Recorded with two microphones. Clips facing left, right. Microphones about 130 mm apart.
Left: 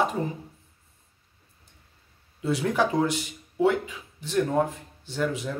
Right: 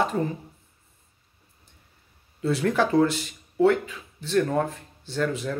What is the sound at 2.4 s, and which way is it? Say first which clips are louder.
Speech: right 1 dB; 15° left (ahead or behind).